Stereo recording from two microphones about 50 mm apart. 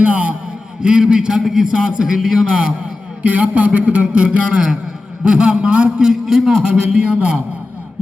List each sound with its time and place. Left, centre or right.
0.0 s a man's voice: right
3.2 s a man's voice: right